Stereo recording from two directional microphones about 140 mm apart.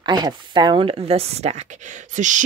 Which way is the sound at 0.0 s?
30° right (ahead or behind).